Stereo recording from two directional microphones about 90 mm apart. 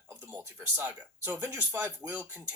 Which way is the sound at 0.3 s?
20° right (ahead or behind).